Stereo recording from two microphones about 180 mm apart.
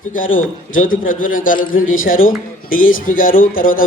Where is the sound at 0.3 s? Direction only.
50° left (ahead or behind).